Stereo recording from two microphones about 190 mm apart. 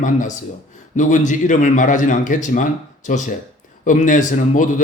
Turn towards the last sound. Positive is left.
turn(degrees=40)  # may be behind; listen again after turning